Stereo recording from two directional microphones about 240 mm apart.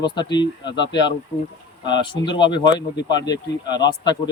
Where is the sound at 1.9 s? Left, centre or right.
Centre.